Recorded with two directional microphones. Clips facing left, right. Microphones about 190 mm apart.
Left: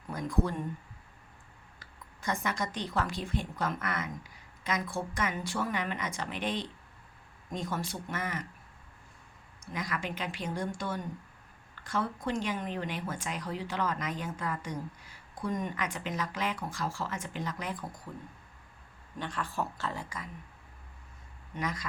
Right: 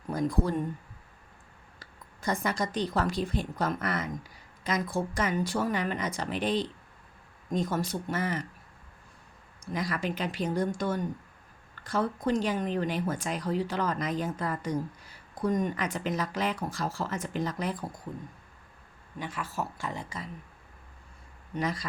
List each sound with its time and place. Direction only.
0.1 s speech: 35° right (ahead or behind)
2.2 s speech: 35° right (ahead or behind)
9.7 s speech: 35° right (ahead or behind)
18.1 s speech: 20° right (ahead or behind)
19.2 s speech: 10° right (ahead or behind)
19.9 s speech: 20° right (ahead or behind)
21.5 s speech: 30° right (ahead or behind)